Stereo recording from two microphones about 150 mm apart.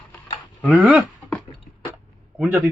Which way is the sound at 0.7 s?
10° right (ahead or behind).